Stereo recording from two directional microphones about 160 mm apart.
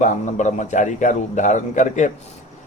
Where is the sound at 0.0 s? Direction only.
50° left (ahead or behind).